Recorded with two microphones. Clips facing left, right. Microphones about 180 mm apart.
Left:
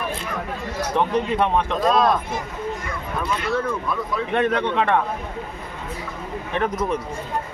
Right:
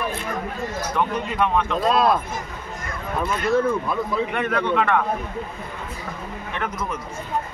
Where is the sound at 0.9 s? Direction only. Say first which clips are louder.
Left 4 dB; 30° left (ahead or behind).